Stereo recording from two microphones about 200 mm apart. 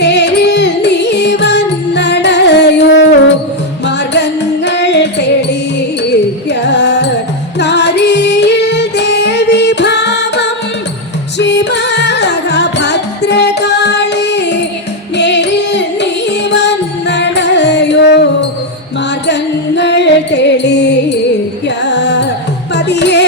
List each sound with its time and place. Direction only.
0.0 s music: 60° left (ahead or behind)
6.5 s carnatic music: 60° left (ahead or behind)
7.6 s music: 60° left (ahead or behind)